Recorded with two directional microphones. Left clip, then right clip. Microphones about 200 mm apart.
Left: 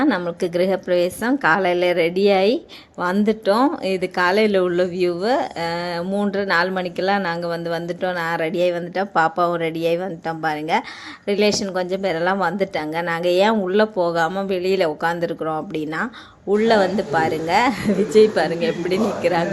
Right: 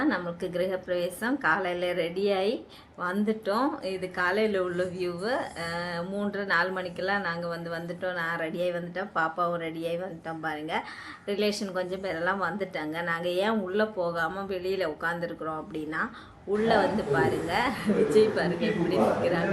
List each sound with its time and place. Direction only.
0.0 s speech: 40° left (ahead or behind)